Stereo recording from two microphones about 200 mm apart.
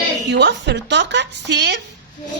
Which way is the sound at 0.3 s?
60° right (ahead or behind).